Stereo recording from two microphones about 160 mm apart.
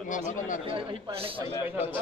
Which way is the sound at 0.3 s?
55° left (ahead or behind).